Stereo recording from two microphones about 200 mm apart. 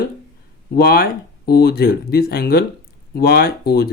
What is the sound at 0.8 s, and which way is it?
Speech, 50° left (ahead or behind).